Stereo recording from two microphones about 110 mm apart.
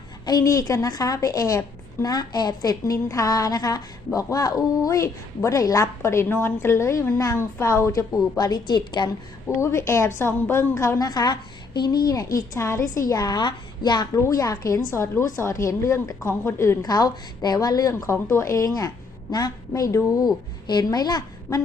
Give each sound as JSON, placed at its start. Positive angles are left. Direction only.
{"t": 0.3, "sound": "a woman's voice", "side_deg": 35}
{"t": 9.6, "sound": "a woman's voice", "side_deg": 25}
{"t": 14.2, "sound": "a woman's voice", "side_deg": 30}
{"t": 16.8, "sound": "a woman's voice", "side_deg": 35}